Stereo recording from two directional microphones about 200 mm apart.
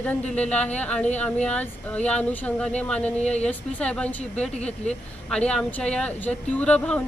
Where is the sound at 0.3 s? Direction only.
5° left (ahead or behind).